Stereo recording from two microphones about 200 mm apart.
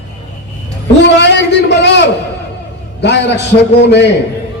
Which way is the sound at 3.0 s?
60° left (ahead or behind).